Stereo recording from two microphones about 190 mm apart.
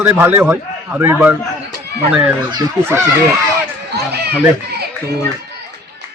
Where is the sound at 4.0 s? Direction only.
60° right (ahead or behind).